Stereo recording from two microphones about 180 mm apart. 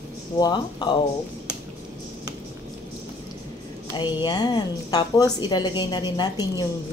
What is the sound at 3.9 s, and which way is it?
A woman's voice, 25° left (ahead or behind).